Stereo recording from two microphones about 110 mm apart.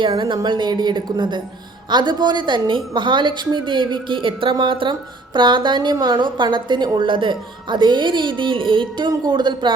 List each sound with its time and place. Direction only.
0.0 s speech: 45° right (ahead or behind)